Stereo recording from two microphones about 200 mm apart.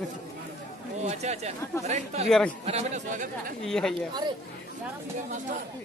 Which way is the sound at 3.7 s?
Centre (ahead or behind).